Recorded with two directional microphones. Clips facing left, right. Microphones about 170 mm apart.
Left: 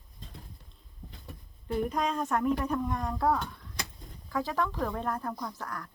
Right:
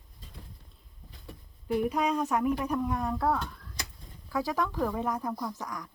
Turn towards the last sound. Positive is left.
turn(degrees=-10)  # may be behind; listen again after turning